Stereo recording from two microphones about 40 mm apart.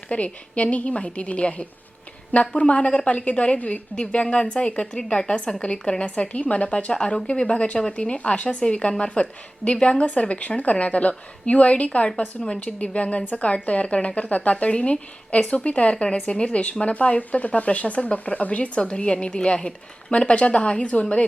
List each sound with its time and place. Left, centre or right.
0.1 s a woman's voice: left